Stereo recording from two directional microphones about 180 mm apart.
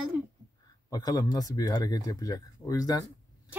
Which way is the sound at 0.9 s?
20° left (ahead or behind).